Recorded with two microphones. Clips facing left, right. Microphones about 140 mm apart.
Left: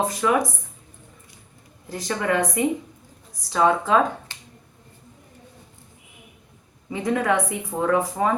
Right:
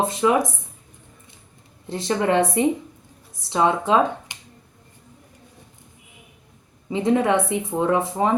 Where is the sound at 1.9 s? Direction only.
25° right (ahead or behind).